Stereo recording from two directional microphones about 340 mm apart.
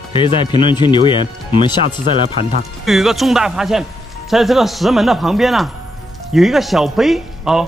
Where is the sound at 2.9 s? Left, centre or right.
Centre.